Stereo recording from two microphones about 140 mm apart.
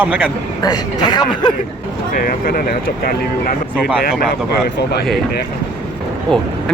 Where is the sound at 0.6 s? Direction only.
30° left (ahead or behind).